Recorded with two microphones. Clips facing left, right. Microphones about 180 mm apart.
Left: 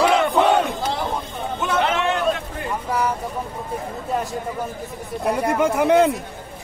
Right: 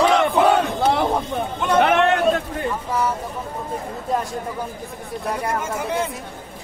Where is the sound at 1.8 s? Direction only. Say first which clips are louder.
Right 5 dB; 60° right (ahead or behind).